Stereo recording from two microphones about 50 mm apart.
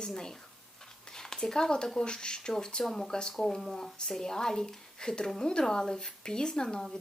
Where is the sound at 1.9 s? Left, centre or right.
Centre.